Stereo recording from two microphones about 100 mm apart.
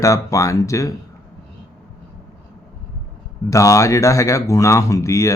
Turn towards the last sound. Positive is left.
turn(degrees=30)  # may be behind; listen again after turning